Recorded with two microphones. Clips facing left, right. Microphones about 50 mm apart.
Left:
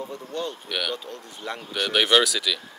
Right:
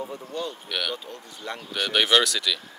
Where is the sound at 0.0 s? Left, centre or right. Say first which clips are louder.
Left 1 dB; centre.